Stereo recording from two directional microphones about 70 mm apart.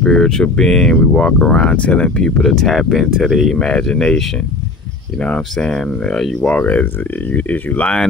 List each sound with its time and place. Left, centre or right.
0.0 s speech: centre
3.5 s speech: centre
5.2 s speech: centre
6.4 s speech: centre